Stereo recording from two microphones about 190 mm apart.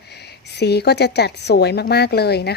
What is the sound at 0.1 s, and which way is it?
A woman's voice, 60° left (ahead or behind).